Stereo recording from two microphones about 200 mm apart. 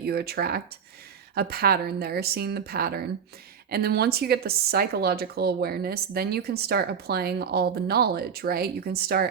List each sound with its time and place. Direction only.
0.0 s speech: 50° right (ahead or behind)